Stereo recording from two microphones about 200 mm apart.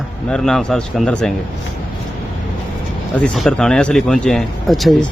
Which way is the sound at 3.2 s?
Centre (ahead or behind).